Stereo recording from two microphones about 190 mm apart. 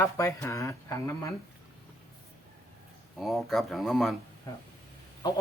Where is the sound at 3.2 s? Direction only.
Centre (ahead or behind).